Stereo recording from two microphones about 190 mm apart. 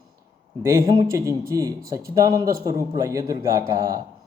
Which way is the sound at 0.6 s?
20° right (ahead or behind).